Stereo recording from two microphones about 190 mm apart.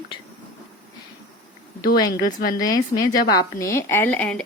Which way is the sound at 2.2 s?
55° left (ahead or behind).